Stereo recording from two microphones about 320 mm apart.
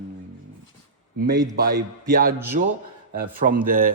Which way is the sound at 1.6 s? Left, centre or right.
Right.